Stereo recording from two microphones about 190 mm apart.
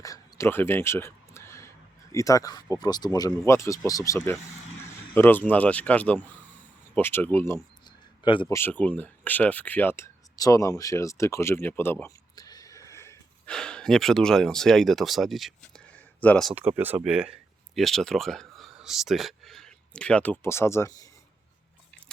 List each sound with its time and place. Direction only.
0.0 s a sound: 15° left (ahead or behind)
2.1 s speech: 15° left (ahead or behind)
8.4 s speech: 10° left (ahead or behind)